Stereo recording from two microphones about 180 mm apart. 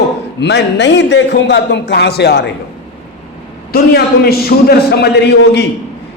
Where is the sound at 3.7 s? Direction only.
60° left (ahead or behind).